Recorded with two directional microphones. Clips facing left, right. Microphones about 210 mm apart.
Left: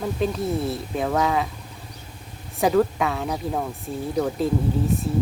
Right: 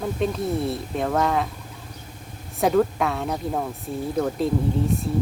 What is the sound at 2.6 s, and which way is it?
Speech, centre (ahead or behind).